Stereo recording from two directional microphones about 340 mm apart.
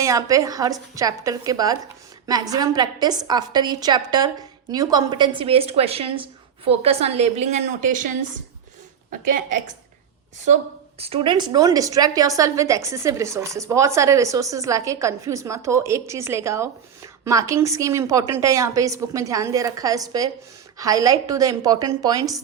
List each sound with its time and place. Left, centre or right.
0.0 s a woman's voice: centre
9.3 s a woman's voice: right